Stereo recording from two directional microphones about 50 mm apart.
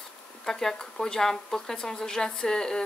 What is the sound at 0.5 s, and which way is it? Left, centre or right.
Speech, centre.